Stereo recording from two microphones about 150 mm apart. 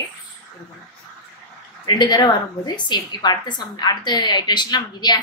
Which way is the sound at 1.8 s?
30° left (ahead or behind).